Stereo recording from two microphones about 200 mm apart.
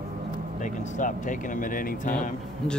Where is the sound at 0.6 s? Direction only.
40° left (ahead or behind).